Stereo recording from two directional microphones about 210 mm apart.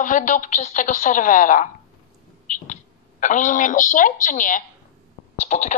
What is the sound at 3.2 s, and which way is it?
Speech, 35° left (ahead or behind).